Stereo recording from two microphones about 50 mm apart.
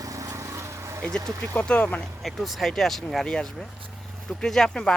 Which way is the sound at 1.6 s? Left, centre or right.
Left.